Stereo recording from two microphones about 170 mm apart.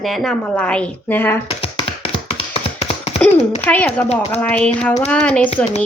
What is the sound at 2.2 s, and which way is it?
Tap, 35° left (ahead or behind).